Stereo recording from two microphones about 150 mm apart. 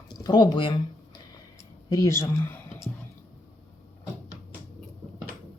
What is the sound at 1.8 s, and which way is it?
Speech, 20° left (ahead or behind).